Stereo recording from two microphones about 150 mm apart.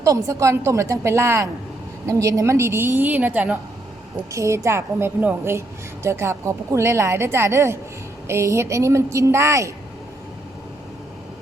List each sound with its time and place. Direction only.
0.0 s a woman's voice: 20° right (ahead or behind)